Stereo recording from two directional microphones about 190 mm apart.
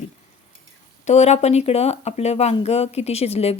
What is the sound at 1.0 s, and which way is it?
Speech, 35° left (ahead or behind).